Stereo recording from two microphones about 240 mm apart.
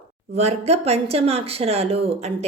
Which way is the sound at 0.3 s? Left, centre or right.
Right.